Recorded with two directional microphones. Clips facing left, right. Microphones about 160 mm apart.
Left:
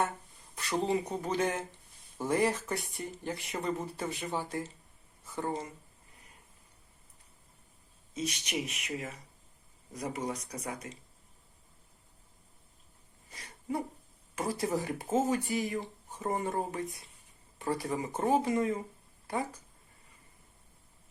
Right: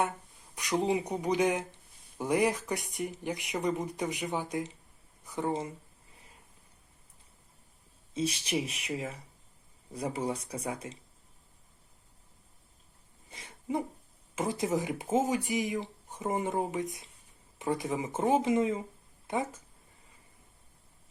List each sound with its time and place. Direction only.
0.5 s speech: 15° right (ahead or behind)
8.1 s speech: 30° right (ahead or behind)
13.3 s a sound: 25° right (ahead or behind)
14.3 s speech: 20° right (ahead or behind)